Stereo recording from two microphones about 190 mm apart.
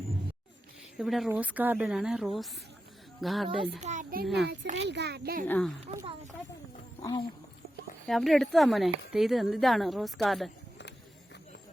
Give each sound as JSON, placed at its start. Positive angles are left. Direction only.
{"t": 0.9, "sound": "a woman's voice", "side_deg": 0}
{"t": 3.6, "sound": "a child's voice", "side_deg": -35}
{"t": 4.8, "sound": "speech", "side_deg": -65}
{"t": 5.5, "sound": "a woman's voice", "side_deg": 5}
{"t": 7.0, "sound": "speech", "side_deg": 20}
{"t": 8.0, "sound": "a woman's voice", "side_deg": 0}